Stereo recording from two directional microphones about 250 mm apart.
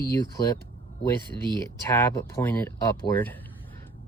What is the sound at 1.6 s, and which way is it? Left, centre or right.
Speech, centre.